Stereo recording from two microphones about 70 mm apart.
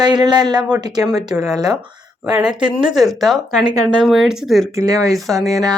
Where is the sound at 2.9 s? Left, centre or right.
Centre.